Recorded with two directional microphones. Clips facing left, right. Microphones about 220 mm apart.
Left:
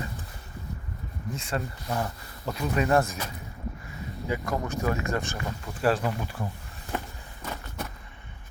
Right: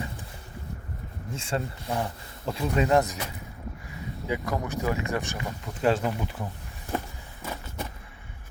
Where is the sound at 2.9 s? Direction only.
15° right (ahead or behind).